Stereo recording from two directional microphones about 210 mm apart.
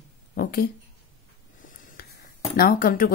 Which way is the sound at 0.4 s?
45° left (ahead or behind).